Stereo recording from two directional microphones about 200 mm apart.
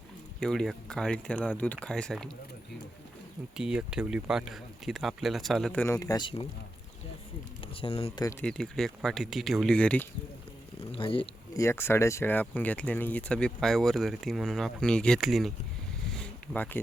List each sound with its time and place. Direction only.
0.3 s speech: centre (ahead or behind)
3.6 s speech: 5° right (ahead or behind); by 6.5 s 25° left (ahead or behind)
7.8 s speech: 30° left (ahead or behind)
8.2 s speech: 15° left (ahead or behind)
8.4 s speech: 5° left (ahead or behind)
10.9 s speech: 25° left (ahead or behind)
11.5 s speech: 15° left (ahead or behind)
16.1 s a sound: 5° left (ahead or behind)